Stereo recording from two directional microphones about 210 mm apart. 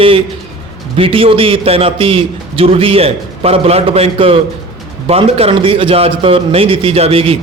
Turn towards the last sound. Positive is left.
turn(degrees=-25)  # may be behind; listen again after turning